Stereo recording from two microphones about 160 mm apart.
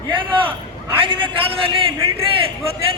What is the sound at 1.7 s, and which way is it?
Speech, 35° right (ahead or behind).